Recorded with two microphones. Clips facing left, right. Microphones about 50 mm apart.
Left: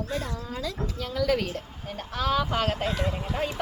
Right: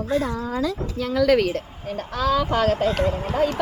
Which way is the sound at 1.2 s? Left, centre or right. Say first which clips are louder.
Right 8 dB; right.